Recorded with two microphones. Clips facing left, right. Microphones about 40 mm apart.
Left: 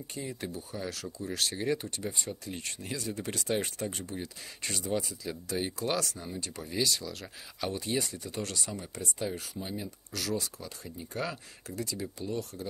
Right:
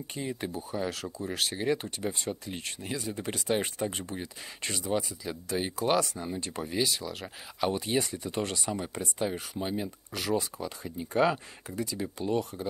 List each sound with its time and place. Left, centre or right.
0.3 s speech: right
1.0 s speech: right
1.3 s speech: centre
9.6 s speech: right
10.1 s speech: right